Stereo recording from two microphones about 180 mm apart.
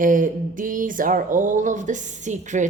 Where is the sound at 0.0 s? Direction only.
50° right (ahead or behind).